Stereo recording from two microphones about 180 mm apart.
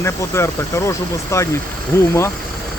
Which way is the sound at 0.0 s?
15° left (ahead or behind).